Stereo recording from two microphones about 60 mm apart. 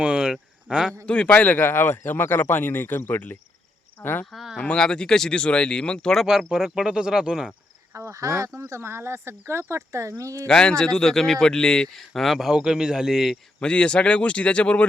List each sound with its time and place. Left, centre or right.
0.0 s a sound: centre
1.0 s a man's voice: centre; by 4.3 s left
4.3 s speech: centre
4.5 s a man's voice: centre
6.5 s speech: centre
7.9 s speech: right
10.4 s a man's voice: centre
12.5 s speech: centre
13.6 s speech: centre